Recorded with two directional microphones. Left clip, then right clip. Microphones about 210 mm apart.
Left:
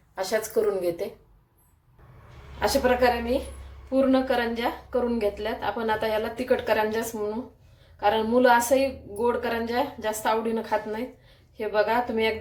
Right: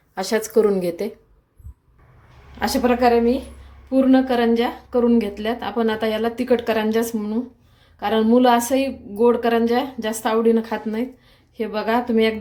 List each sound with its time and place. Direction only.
0.2 s speech: 45° right (ahead or behind)
2.6 s speech: 50° right (ahead or behind)